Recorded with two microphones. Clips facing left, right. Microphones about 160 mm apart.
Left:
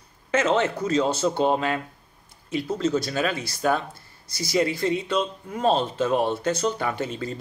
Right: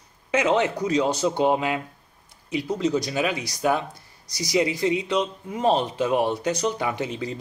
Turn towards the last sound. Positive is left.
turn(degrees=-15)  # may be behind; listen again after turning